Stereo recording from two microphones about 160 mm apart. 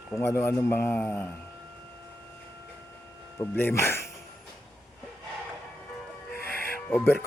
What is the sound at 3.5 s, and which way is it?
Speech, 15° left (ahead or behind).